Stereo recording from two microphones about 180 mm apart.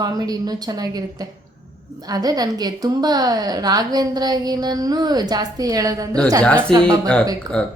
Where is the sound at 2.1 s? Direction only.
20° right (ahead or behind).